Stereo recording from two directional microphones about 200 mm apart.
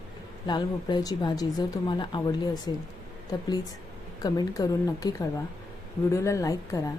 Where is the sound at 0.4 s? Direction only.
20° left (ahead or behind).